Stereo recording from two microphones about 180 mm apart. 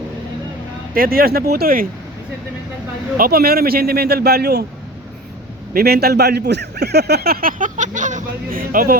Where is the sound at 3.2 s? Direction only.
55° right (ahead or behind).